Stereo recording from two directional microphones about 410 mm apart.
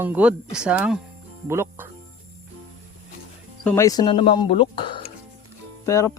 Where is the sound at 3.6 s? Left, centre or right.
Centre.